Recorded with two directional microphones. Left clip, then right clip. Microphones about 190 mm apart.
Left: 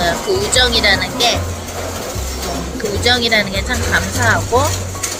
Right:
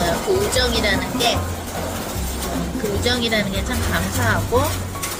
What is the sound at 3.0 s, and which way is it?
Speech, 15° right (ahead or behind).